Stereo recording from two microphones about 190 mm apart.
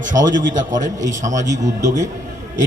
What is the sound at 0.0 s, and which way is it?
A man's voice, 40° right (ahead or behind).